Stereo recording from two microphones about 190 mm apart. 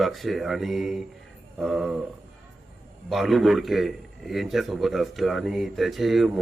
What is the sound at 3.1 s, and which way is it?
A man's voice, centre (ahead or behind).